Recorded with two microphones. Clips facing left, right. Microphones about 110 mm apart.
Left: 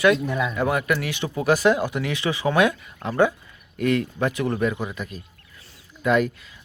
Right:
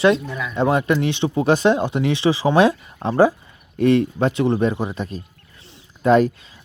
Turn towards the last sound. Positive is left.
turn(degrees=-35)  # may be behind; listen again after turning